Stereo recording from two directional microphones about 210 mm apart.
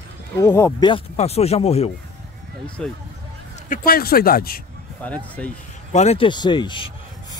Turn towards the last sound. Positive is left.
turn(degrees=20)  # may be behind; listen again after turning